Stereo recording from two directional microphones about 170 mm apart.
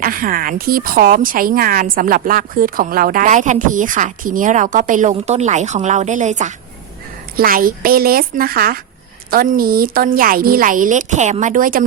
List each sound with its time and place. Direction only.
0.0 s a woman's voice: 55° right (ahead or behind)
7.3 s a woman's voice: 55° right (ahead or behind)